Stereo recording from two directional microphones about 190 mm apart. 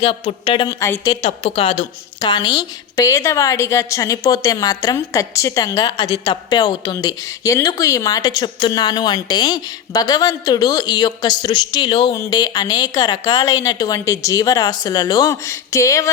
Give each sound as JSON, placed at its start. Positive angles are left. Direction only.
{"t": 0.0, "sound": "a woman's voice", "side_deg": 30}
{"t": 0.7, "sound": "a woman's voice", "side_deg": 15}
{"t": 1.2, "sound": "a woman's voice", "side_deg": 30}